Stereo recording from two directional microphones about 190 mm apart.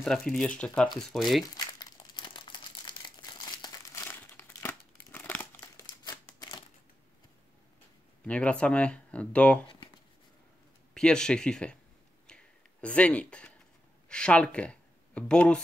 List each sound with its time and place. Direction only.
0.0 s speech: 5° left (ahead or behind)
1.8 s crumpling: 20° left (ahead or behind)
8.3 s speech: 5° left (ahead or behind)
11.0 s speech: 5° left (ahead or behind)
12.3 s a sound: 5° left (ahead or behind)
14.0 s speech: 5° left (ahead or behind)